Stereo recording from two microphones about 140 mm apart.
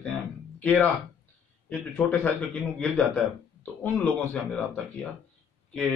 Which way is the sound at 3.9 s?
10° left (ahead or behind).